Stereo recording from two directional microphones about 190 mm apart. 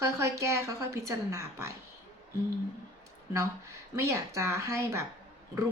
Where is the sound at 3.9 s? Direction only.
15° right (ahead or behind).